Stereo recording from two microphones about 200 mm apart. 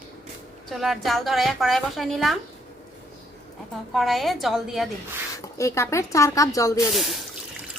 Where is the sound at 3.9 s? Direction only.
Centre (ahead or behind).